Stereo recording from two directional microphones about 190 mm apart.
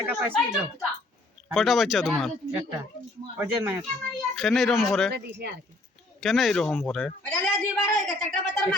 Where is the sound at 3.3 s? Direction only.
10° right (ahead or behind).